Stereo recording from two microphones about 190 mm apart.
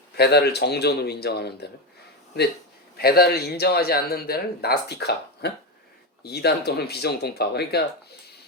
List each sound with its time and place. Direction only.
0.2 s speech: 60° left (ahead or behind)
3.0 s speech: 55° left (ahead or behind)